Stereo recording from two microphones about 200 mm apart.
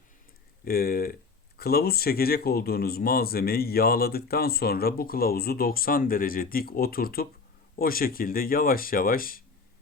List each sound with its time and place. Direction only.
0.6 s speech: 45° left (ahead or behind)